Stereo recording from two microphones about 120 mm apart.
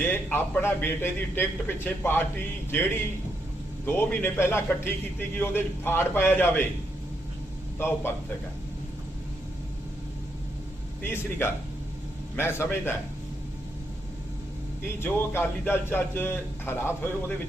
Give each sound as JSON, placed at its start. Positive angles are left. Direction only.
{"t": 0.0, "sound": "a man's voice", "side_deg": 15}
{"t": 7.8, "sound": "a man's voice", "side_deg": 20}
{"t": 11.0, "sound": "a man's voice", "side_deg": 20}
{"t": 15.0, "sound": "a man's voice", "side_deg": 20}